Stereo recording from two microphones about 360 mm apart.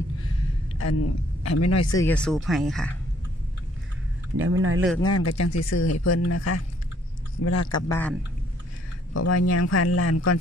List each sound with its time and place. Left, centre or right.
0.7 s speech: left
2.0 s speech: centre
4.4 s speech: right
5.0 s a man's voice: left
9.1 s a man's voice: left